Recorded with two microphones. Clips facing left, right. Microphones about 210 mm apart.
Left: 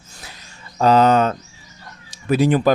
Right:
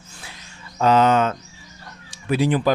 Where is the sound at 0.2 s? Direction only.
40° left (ahead or behind).